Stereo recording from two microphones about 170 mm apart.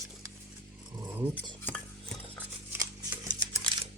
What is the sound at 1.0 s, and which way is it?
Rub, 20° right (ahead or behind).